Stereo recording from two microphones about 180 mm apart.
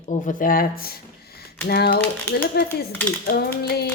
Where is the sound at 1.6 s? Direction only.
60° left (ahead or behind).